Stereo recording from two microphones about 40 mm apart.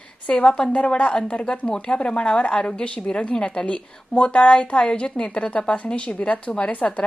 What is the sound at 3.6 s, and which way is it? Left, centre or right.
Speech, left.